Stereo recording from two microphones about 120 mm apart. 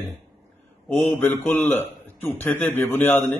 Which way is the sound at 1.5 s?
15° left (ahead or behind).